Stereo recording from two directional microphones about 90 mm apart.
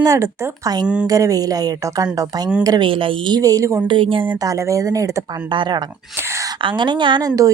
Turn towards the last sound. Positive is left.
turn(degrees=-60)  # may be behind; listen again after turning